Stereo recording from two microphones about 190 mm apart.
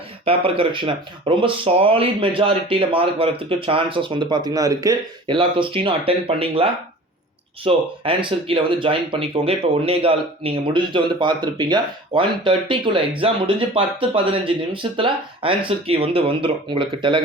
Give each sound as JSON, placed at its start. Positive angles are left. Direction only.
{"t": 0.3, "sound": "speech", "side_deg": -30}